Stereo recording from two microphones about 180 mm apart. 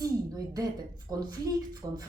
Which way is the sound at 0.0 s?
20° right (ahead or behind).